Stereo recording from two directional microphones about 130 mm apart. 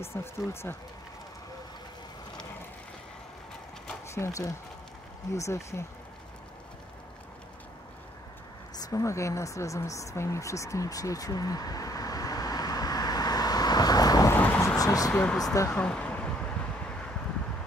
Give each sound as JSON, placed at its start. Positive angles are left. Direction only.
{"t": 0.0, "sound": "speech", "side_deg": 20}
{"t": 4.1, "sound": "speech", "side_deg": 20}
{"t": 8.7, "sound": "a sound", "side_deg": 30}
{"t": 14.3, "sound": "thunder", "side_deg": 15}
{"t": 14.8, "sound": "speech", "side_deg": 25}
{"t": 15.7, "sound": "speech", "side_deg": 10}